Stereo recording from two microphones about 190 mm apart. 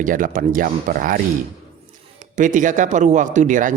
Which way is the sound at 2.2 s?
40° right (ahead or behind).